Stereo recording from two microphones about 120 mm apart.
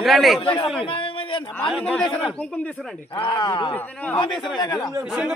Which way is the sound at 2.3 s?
10° left (ahead or behind).